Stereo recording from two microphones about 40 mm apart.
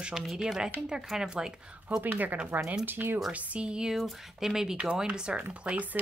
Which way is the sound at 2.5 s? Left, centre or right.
Right.